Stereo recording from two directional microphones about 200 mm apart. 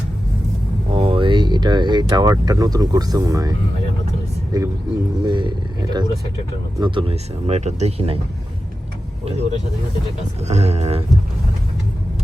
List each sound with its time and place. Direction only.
0.9 s speech: 25° right (ahead or behind)
4.5 s speech: 15° right (ahead or behind)
9.2 s speech: 35° right (ahead or behind)